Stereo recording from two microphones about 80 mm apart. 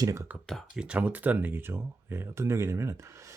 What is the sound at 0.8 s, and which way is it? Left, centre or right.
Speech, right.